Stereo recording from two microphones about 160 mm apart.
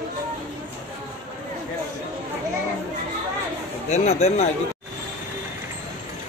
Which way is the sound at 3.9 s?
45° left (ahead or behind).